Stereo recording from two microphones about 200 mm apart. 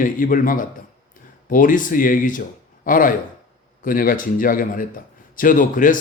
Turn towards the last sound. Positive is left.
turn(degrees=40)  # may be behind; listen again after turning